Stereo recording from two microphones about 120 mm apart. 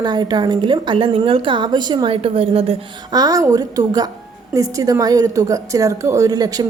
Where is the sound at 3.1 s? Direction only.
30° right (ahead or behind).